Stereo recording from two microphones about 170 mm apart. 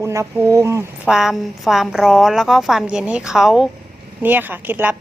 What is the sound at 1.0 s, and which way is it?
A woman's voice, 5° right (ahead or behind).